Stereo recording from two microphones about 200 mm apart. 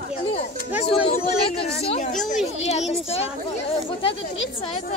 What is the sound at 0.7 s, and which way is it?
Speech, 30° left (ahead or behind).